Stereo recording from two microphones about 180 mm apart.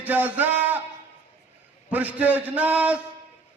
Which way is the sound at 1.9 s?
10° right (ahead or behind).